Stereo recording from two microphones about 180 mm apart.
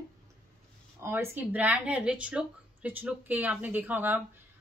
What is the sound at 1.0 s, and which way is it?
Speech, 15° right (ahead or behind).